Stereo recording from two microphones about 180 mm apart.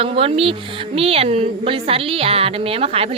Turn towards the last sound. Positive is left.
turn(degrees=-35)  # may be behind; listen again after turning